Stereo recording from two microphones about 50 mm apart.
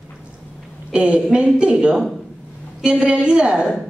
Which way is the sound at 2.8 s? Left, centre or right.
Centre.